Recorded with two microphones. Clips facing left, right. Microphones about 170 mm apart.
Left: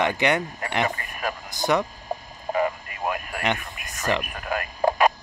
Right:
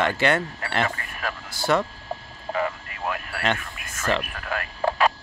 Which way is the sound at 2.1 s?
15° left (ahead or behind).